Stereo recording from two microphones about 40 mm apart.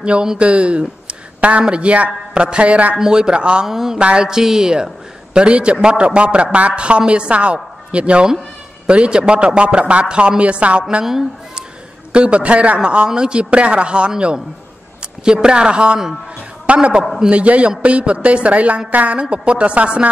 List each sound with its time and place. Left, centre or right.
0.0 s a man's voice: right
3.0 s a man's voice: centre
3.6 s speech: centre
4.0 s a man's voice: right
4.3 s a man's voice: centre
12.1 s a man's voice: right
19.3 s a man's voice: right